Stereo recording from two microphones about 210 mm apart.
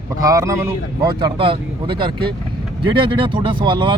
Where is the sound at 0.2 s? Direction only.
15° right (ahead or behind).